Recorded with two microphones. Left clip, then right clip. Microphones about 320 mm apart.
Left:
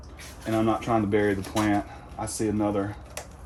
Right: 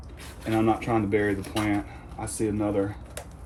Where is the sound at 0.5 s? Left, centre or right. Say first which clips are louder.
Even; centre.